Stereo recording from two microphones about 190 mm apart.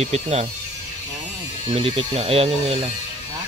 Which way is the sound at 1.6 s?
30° right (ahead or behind).